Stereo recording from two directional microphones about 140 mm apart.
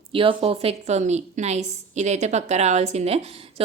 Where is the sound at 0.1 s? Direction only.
40° right (ahead or behind).